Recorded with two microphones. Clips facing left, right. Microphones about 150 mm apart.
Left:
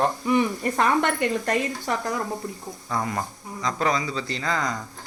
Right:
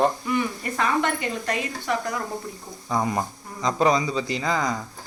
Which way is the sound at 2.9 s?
20° right (ahead or behind).